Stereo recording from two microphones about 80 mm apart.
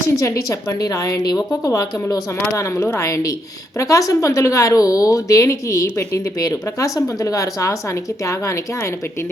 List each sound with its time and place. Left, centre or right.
0.2 s a woman's voice: left